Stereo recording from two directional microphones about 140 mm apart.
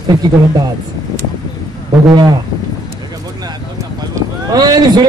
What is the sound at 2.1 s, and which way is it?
Speech, 30° right (ahead or behind).